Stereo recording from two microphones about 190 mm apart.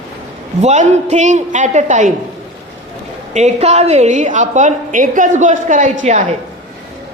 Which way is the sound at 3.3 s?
35° right (ahead or behind).